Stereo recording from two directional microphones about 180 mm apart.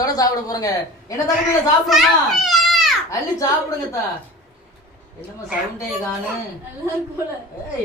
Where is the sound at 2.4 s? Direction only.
Centre (ahead or behind).